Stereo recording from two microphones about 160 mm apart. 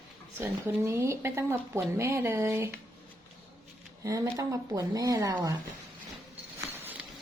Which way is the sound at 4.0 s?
20° right (ahead or behind).